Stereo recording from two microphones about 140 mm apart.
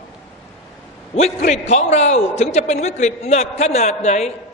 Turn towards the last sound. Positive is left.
turn(degrees=55)  # may be behind; listen again after turning